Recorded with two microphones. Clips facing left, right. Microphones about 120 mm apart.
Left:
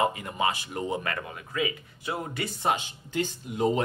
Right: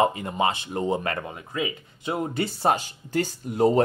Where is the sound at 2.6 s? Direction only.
40° right (ahead or behind).